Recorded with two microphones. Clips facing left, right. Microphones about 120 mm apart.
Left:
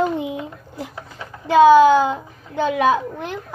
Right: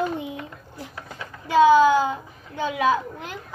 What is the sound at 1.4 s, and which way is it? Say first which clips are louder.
A child's voice: left 5 dB; 70° left (ahead or behind).